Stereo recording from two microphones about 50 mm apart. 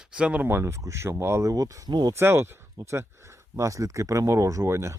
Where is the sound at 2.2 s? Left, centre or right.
Right.